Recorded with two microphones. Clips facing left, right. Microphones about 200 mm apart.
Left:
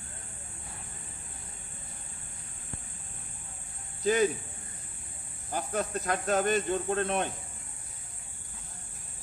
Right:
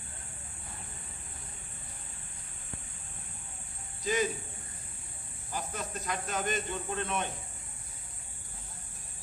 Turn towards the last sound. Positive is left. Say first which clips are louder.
# left 5 dB
turn(degrees=45)  # may be behind; listen again after turning